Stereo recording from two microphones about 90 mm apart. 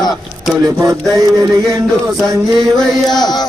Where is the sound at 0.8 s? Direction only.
40° right (ahead or behind).